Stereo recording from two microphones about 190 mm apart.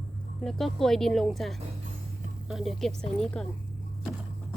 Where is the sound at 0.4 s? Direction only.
Centre (ahead or behind).